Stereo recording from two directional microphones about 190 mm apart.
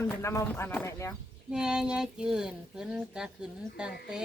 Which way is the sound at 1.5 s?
5° right (ahead or behind).